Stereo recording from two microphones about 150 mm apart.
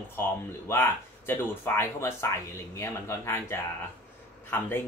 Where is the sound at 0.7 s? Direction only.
15° left (ahead or behind).